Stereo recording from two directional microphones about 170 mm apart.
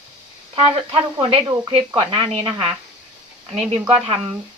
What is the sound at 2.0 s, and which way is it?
Speech, 30° right (ahead or behind).